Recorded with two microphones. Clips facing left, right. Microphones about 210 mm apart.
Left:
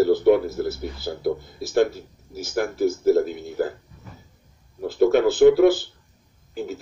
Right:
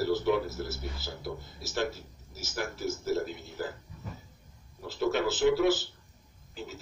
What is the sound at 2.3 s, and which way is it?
Speech, 55° left (ahead or behind).